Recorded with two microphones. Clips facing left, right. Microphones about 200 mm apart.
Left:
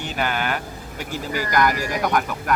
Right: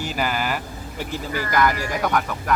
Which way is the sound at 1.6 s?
10° left (ahead or behind).